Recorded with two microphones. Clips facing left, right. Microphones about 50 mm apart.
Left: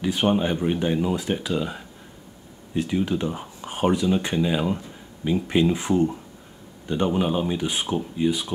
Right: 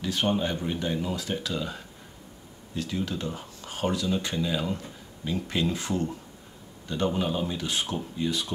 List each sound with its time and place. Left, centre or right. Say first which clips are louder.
0.0 s speech: left 5 dB; left